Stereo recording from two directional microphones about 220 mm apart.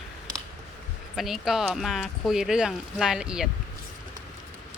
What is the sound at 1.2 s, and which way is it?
Speech, centre (ahead or behind).